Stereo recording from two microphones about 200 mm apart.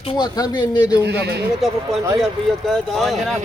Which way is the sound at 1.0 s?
55° right (ahead or behind).